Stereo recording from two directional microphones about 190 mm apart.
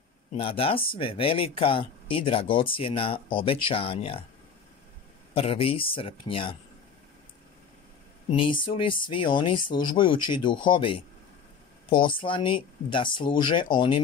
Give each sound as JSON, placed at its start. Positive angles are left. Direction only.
{"t": 0.3, "sound": "speech", "side_deg": 30}
{"t": 5.3, "sound": "speech", "side_deg": 30}
{"t": 8.3, "sound": "speech", "side_deg": 25}